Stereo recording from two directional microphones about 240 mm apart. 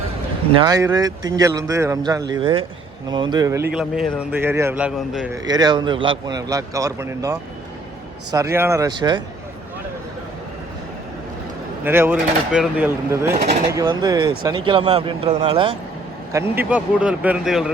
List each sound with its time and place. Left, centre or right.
0.6 s speech: centre
3.7 s a man's voice: centre
5.5 s a man's voice: centre
11.9 s a man's voice: centre
16.3 s a man's voice: centre